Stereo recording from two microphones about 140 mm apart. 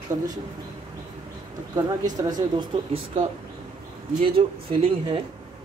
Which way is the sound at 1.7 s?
25° right (ahead or behind).